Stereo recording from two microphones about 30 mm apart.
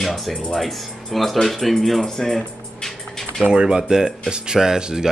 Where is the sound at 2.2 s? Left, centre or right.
Centre.